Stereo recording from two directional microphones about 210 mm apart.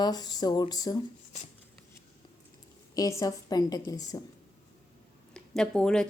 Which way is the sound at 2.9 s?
15° left (ahead or behind).